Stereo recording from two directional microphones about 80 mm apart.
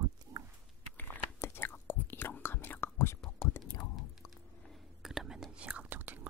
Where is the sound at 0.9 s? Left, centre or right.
Left.